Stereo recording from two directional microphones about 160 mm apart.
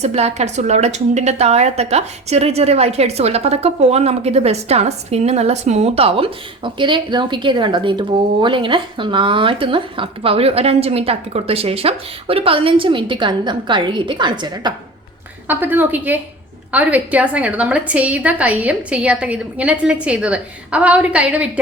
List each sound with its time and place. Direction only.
0.0 s a woman's voice: 40° right (ahead or behind); by 14.7 s 25° right (ahead or behind)
15.4 s a woman's voice: 10° right (ahead or behind)